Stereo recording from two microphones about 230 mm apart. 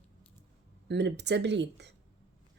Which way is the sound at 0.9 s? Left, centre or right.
Right.